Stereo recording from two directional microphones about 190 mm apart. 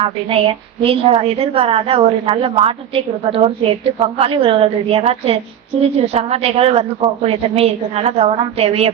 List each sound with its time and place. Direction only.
0.0 s a woman's voice: 30° right (ahead or behind)